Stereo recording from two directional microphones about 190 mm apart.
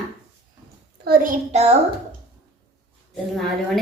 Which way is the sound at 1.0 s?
50° right (ahead or behind).